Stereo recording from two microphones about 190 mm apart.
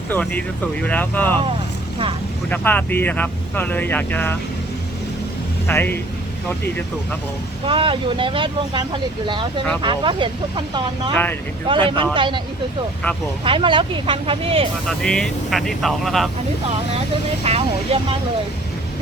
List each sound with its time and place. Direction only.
0.1 s speech: 10° left (ahead or behind)
2.5 s speech: 10° left (ahead or behind)
5.6 s speech: 10° left (ahead or behind)
7.7 s speech: 25° right (ahead or behind)
11.7 s speech: 25° right (ahead or behind)
13.4 s speech: 25° right (ahead or behind)
14.8 s speech: 5° left (ahead or behind)
17.4 s speech: 30° right (ahead or behind)